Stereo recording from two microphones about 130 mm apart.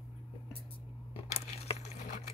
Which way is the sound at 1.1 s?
50° left (ahead or behind).